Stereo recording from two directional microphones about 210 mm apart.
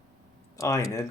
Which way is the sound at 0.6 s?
15° left (ahead or behind).